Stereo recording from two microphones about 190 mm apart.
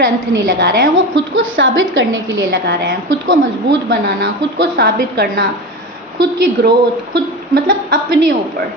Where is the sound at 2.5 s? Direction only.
65° right (ahead or behind).